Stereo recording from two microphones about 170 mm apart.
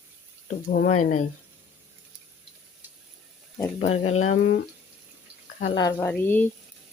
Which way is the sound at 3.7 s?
40° left (ahead or behind).